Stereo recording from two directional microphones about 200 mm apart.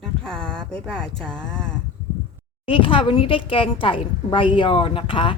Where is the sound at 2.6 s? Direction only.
25° left (ahead or behind).